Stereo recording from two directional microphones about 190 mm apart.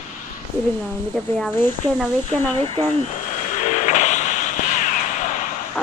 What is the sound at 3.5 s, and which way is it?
Vehicle, 40° left (ahead or behind).